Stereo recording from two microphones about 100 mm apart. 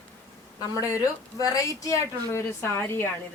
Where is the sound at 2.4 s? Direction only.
20° left (ahead or behind).